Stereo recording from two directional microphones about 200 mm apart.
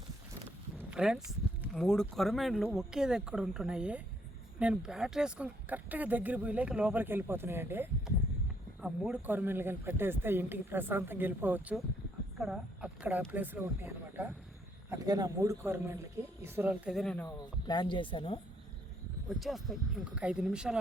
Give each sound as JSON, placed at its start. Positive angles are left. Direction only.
{"t": 0.8, "sound": "a sound", "side_deg": -5}
{"t": 1.7, "sound": "speech", "side_deg": 5}
{"t": 17.2, "sound": "speech", "side_deg": 20}
{"t": 19.4, "sound": "speech", "side_deg": 0}